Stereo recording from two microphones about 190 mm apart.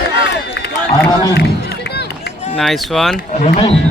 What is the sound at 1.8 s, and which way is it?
Run, 55° left (ahead or behind).